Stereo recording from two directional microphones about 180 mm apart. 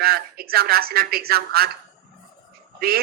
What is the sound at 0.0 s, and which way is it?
A woman's voice, 60° right (ahead or behind).